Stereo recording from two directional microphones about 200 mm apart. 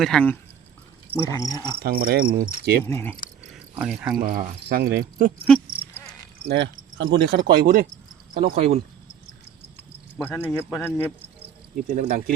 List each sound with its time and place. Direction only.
0.0 s speech: 5° left (ahead or behind)
1.8 s speech: 50° right (ahead or behind)
2.8 s speech: 10° left (ahead or behind)
3.5 s cricket: centre (ahead or behind)
4.2 s speech: 45° right (ahead or behind)
6.5 s speech: 55° right (ahead or behind)
10.2 s speech: 10° left (ahead or behind)
11.9 s speech: 45° right (ahead or behind)